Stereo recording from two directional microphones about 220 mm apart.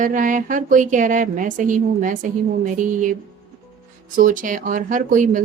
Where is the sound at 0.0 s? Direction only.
35° right (ahead or behind).